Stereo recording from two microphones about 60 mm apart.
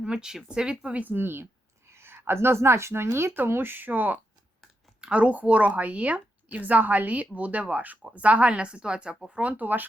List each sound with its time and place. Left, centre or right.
0.0 s speech: centre
1.0 s a woman's voice: right
4.9 s speech: centre